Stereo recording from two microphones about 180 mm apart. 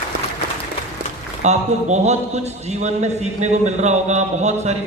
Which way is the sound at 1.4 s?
40° right (ahead or behind).